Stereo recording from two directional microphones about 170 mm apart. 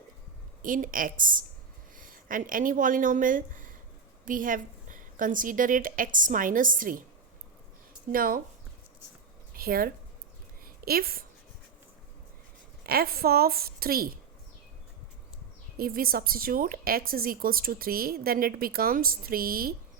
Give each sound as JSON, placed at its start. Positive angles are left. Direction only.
{"t": 0.6, "sound": "a woman's voice", "side_deg": -50}
{"t": 8.1, "sound": "a woman's voice", "side_deg": -55}
{"t": 9.6, "sound": "a woman's voice", "side_deg": -60}
{"t": 12.8, "sound": "a woman's voice", "side_deg": -65}
{"t": 15.8, "sound": "a woman's voice", "side_deg": -60}